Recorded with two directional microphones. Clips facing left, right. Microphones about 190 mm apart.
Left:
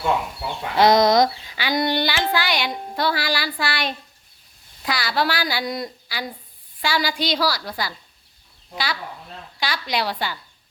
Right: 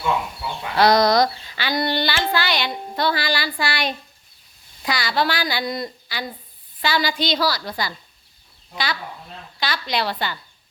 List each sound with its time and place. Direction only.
0.8 s a woman's voice: 20° left (ahead or behind)